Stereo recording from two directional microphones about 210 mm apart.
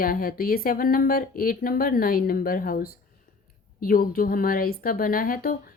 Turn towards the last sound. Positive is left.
turn(degrees=40)  # may be behind; listen again after turning